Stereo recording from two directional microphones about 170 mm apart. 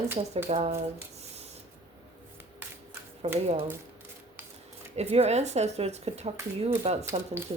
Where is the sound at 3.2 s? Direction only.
35° right (ahead or behind).